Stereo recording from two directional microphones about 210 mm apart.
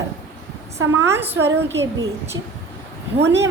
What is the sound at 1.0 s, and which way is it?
A woman's voice, 10° right (ahead or behind).